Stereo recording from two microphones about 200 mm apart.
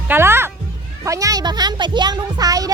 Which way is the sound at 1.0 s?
15° right (ahead or behind).